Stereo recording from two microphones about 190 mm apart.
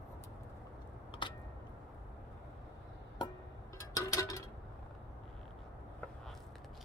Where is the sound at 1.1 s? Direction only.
25° left (ahead or behind).